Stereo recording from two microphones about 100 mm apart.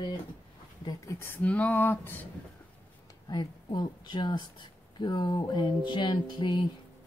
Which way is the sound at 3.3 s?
50° left (ahead or behind).